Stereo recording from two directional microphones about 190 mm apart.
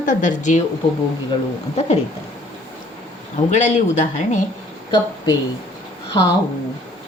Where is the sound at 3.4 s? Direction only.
40° left (ahead or behind).